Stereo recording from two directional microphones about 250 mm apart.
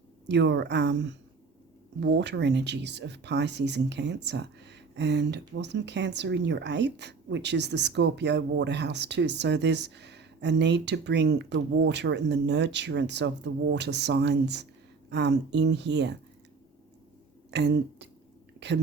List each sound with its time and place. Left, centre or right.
0.3 s speech: right
17.5 s speech: right